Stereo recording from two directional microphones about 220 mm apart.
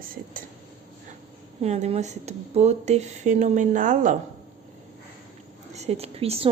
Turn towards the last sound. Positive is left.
turn(degrees=-25)  # may be behind; listen again after turning